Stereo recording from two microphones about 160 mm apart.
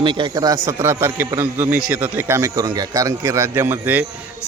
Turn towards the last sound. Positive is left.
turn(degrees=-10)  # may be behind; listen again after turning